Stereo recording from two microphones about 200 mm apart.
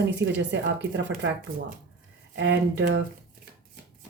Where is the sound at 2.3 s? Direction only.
65° right (ahead or behind).